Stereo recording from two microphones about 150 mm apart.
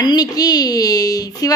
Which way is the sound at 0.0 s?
25° left (ahead or behind).